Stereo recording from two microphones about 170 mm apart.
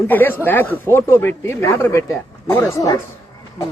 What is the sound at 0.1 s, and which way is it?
A man's voice, 10° left (ahead or behind).